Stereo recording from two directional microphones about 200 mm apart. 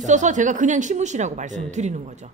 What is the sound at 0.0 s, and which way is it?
A woman's voice, 40° right (ahead or behind).